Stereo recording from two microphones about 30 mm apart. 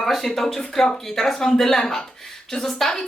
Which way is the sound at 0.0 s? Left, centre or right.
Centre.